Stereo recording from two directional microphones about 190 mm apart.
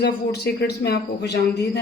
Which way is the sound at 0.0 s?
60° left (ahead or behind).